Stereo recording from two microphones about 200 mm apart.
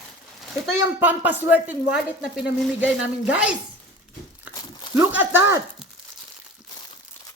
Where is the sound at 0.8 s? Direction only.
10° right (ahead or behind).